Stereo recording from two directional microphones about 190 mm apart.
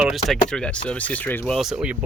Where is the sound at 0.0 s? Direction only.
Centre (ahead or behind).